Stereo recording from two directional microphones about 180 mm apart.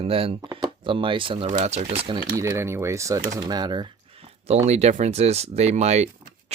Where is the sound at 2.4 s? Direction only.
15° right (ahead or behind).